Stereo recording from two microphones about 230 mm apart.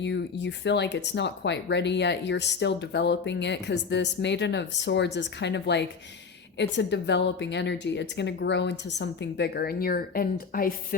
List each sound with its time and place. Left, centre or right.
0.0 s speech: left